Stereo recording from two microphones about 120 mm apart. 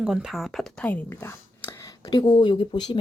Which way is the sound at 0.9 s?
15° left (ahead or behind).